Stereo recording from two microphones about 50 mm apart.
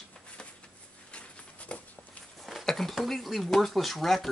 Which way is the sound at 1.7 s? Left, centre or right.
Left.